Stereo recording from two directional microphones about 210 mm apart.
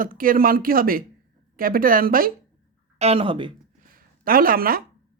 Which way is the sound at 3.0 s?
25° right (ahead or behind).